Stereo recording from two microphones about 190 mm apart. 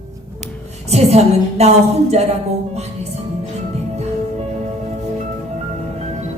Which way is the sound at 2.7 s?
35° right (ahead or behind).